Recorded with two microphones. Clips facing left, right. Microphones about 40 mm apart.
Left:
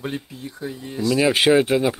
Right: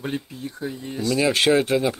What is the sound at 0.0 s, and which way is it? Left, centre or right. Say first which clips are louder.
Speech: right 1 dB; centre.